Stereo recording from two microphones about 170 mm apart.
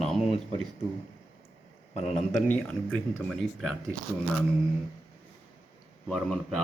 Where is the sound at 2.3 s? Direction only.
10° left (ahead or behind).